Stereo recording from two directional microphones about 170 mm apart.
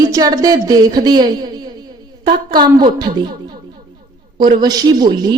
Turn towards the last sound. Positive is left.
turn(degrees=-25)  # may be behind; listen again after turning